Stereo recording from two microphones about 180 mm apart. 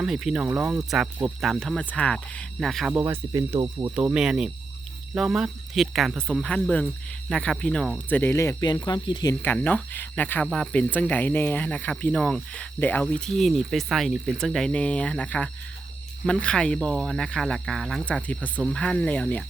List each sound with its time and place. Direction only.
0.0 s speech: centre (ahead or behind)
3.0 s speech: 15° right (ahead or behind)
3.9 s speech: 5° right (ahead or behind)
6.4 s speech: 10° left (ahead or behind)
9.4 s speech: 10° left (ahead or behind)